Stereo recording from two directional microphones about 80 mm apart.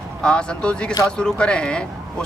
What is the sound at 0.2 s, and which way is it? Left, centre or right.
Speech, centre.